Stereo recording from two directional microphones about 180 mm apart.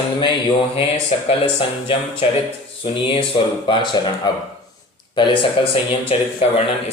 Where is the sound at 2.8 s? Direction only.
30° left (ahead or behind).